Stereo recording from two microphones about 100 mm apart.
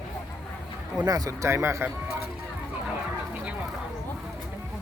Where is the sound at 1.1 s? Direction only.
35° right (ahead or behind).